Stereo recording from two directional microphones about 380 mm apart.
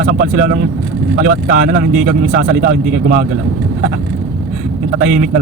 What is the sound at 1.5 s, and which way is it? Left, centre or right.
Speech, right.